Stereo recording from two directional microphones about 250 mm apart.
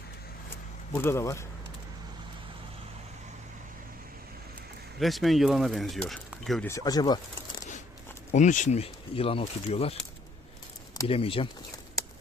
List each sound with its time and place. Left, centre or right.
0.9 s speech: centre
4.9 s speech: centre
6.7 s speech: centre
8.3 s speech: left
10.9 s speech: left